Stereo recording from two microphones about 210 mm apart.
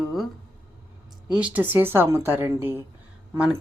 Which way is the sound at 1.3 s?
5° right (ahead or behind).